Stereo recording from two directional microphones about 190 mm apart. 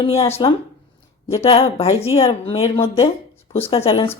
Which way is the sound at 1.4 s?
30° left (ahead or behind).